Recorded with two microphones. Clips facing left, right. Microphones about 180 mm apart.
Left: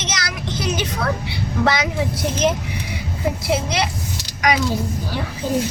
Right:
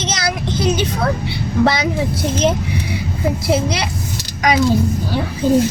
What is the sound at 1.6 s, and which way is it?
Speech, 30° right (ahead or behind).